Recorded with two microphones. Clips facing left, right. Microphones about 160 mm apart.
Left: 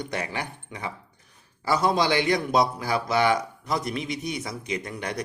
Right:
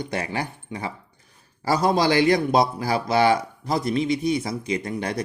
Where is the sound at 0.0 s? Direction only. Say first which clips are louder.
Right 3 dB; 30° right (ahead or behind).